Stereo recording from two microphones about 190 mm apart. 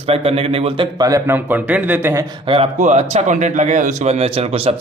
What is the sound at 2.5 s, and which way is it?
A man's voice, 35° right (ahead or behind).